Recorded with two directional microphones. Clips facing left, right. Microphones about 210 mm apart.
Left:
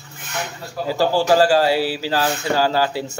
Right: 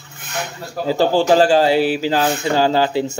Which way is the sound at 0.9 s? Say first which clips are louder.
Right 3 dB; 20° right (ahead or behind).